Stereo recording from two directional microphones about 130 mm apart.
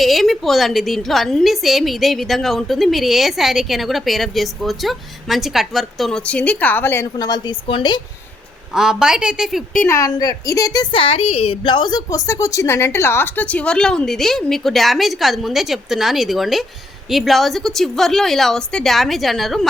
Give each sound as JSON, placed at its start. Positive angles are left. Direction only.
{"t": 0.0, "sound": "a woman's voice", "side_deg": 0}
{"t": 7.2, "sound": "a woman's voice", "side_deg": 30}
{"t": 8.7, "sound": "a woman's voice", "side_deg": -5}
{"t": 9.8, "sound": "a woman's voice", "side_deg": 25}
{"t": 10.9, "sound": "a woman's voice", "side_deg": 45}